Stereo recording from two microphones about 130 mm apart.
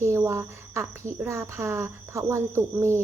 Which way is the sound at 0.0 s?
20° right (ahead or behind).